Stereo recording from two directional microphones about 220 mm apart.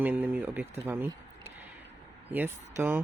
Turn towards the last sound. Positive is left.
turn(degrees=-10)  # may be behind; listen again after turning